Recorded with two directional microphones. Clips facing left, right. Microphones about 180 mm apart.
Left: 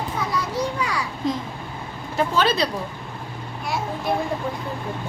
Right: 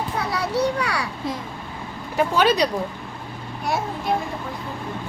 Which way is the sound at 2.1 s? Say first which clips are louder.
Right 2 dB; 15° right (ahead or behind).